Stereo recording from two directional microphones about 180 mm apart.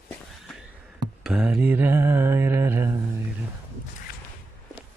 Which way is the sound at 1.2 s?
5° right (ahead or behind).